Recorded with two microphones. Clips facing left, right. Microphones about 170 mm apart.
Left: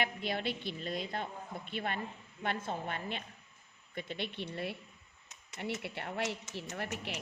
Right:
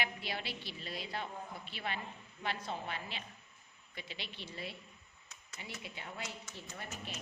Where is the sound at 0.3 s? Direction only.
50° left (ahead or behind).